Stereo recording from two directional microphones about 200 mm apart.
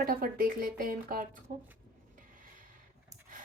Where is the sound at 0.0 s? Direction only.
45° right (ahead or behind).